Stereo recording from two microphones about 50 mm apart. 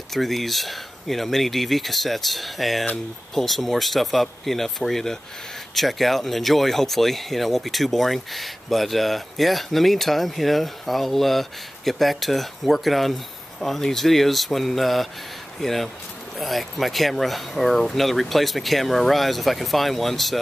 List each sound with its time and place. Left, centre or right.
0.1 s speech: centre